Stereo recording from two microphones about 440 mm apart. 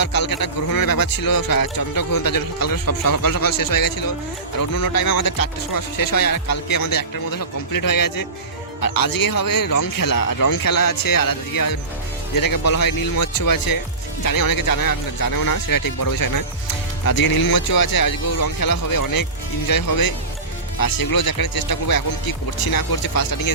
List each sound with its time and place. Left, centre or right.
0.0 s speech: left